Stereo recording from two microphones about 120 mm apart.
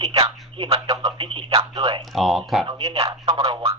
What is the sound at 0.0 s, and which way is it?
Speech, 35° right (ahead or behind).